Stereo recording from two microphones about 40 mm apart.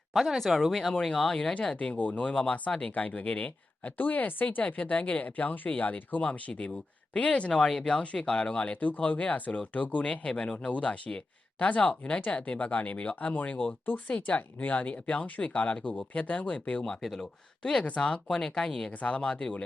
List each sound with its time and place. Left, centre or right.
0.1 s speech: centre
1.7 s speech: left
2.9 s speech: left
3.9 s speech: left
9.0 s speech: left
10.0 s speech: left
16.8 s speech: centre
17.2 s speech: centre
18.9 s speech: left